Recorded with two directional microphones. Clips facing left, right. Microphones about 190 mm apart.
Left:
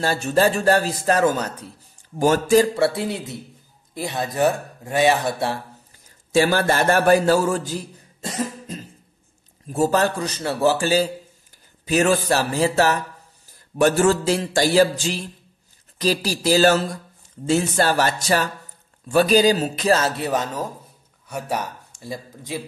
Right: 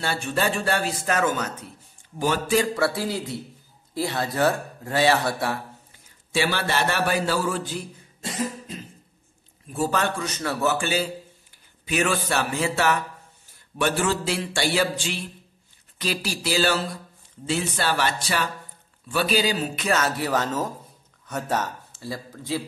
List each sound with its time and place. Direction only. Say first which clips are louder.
0.0 s a man's voice: left 6 dB; 40° left (ahead or behind)
2.8 s a man's voice: left 3 dB; 25° left (ahead or behind)
6.3 s a man's voice: left 6 dB; 45° left (ahead or behind); by 22.6 s 20° left (ahead or behind)